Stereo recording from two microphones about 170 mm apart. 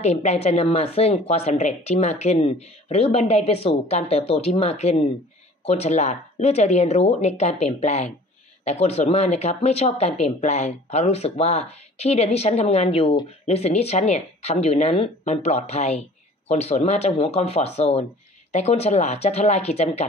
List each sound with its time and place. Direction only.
0.0 s speech: 40° left (ahead or behind)